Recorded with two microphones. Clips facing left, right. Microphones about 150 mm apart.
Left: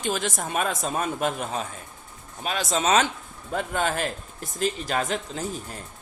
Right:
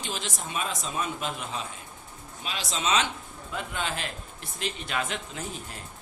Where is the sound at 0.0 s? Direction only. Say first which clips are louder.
Left 8 dB; 50° left (ahead or behind).